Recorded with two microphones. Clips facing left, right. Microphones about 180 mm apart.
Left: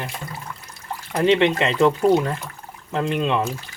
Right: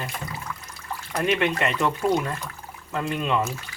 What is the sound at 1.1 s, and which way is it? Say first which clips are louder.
Speech: left 6 dB; 25° left (ahead or behind).